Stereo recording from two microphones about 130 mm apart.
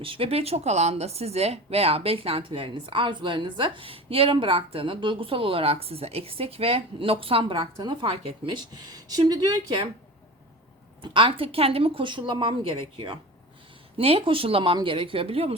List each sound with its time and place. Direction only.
0.0 s speech: 45° right (ahead or behind)
11.0 s speech: 40° right (ahead or behind)